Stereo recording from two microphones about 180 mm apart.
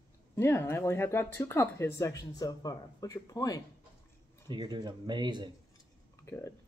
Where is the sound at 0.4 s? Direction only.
15° left (ahead or behind).